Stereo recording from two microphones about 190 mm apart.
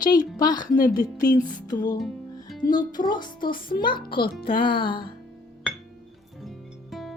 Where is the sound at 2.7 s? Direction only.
20° left (ahead or behind).